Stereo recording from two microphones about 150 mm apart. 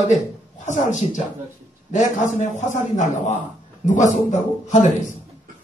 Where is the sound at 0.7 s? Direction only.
55° left (ahead or behind).